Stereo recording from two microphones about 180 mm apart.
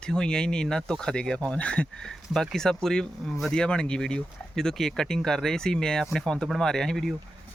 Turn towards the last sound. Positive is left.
turn(degrees=0)  # may be behind; listen again after turning